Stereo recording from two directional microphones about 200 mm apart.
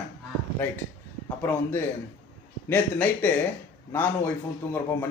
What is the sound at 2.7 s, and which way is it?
A man's voice, 10° left (ahead or behind).